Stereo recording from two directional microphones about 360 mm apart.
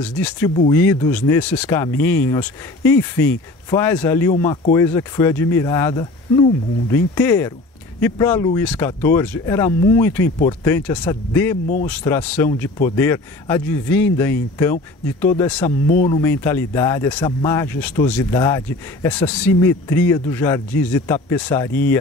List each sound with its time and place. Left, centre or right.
0.0 s speech: centre
15.9 s speech: left
16.2 s speech: centre